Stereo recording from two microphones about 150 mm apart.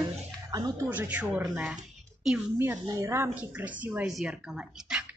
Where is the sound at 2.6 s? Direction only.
20° right (ahead or behind).